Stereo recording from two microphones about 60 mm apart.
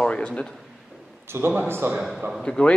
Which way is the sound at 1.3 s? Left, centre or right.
Right.